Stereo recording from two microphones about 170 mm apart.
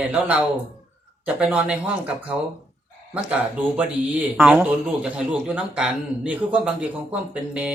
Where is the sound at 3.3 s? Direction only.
10° right (ahead or behind).